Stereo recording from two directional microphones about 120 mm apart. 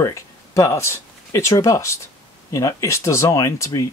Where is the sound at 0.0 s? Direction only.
25° left (ahead or behind).